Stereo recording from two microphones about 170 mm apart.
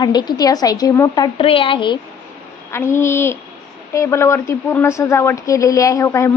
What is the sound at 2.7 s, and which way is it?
Speech, 15° left (ahead or behind).